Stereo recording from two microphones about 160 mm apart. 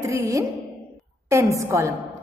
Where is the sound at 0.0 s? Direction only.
20° right (ahead or behind).